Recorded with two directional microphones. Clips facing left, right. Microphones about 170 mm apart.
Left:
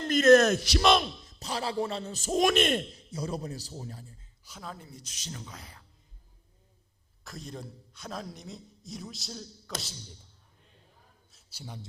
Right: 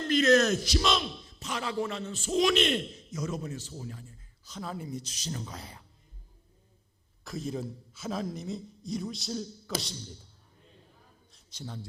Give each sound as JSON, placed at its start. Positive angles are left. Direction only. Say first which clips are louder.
{"t": 0.1, "sound": "a man's voice", "louder": "left 4 dB", "side_deg": 50}
{"t": 1.4, "sound": "a man's voice", "louder": "left 1 dB", "side_deg": 35}
{"t": 3.1, "sound": "a man's voice", "louder": "even", "side_deg": 30}
{"t": 4.4, "sound": "speech", "louder": "right 4 dB", "side_deg": 5}
{"t": 5.0, "sound": "speech", "louder": "right 5 dB", "side_deg": -35}
{"t": 7.3, "sound": "a man's voice", "louder": "right 7 dB", "side_deg": 0}
{"t": 11.3, "sound": "a sound", "louder": "right 3 dB", "side_deg": 5}